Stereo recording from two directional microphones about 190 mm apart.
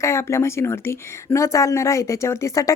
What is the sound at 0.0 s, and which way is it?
Speech, 15° left (ahead or behind).